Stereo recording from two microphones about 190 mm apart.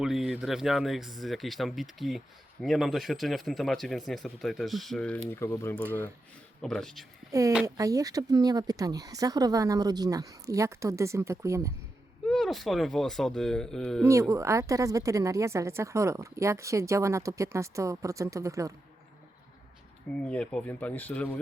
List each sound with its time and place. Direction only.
0.0 s speech: centre (ahead or behind)
7.3 s speech: 15° right (ahead or behind)
12.3 s speech: centre (ahead or behind)
14.0 s speech: 15° right (ahead or behind)
20.2 s speech: 5° left (ahead or behind)